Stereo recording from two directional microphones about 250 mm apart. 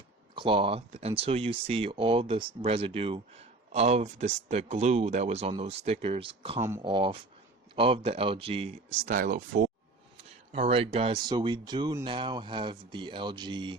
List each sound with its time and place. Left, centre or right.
0.3 s speech: right
10.5 s speech: right